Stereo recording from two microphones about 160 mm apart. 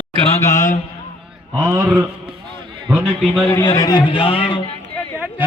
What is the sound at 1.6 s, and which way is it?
Speech, 20° right (ahead or behind).